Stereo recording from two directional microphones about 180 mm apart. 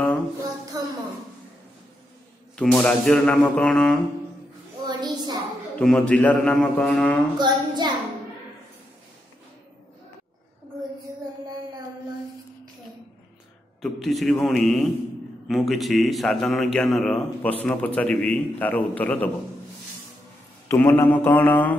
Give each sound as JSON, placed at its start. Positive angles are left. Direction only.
{"t": 0.7, "sound": "a sound", "side_deg": -20}
{"t": 2.5, "sound": "a man's voice", "side_deg": 5}
{"t": 4.8, "sound": "a sound", "side_deg": -25}
{"t": 5.8, "sound": "a man's voice", "side_deg": 5}
{"t": 7.3, "sound": "child singing", "side_deg": -25}
{"t": 13.7, "sound": "a man's voice", "side_deg": 0}
{"t": 20.6, "sound": "speech", "side_deg": 15}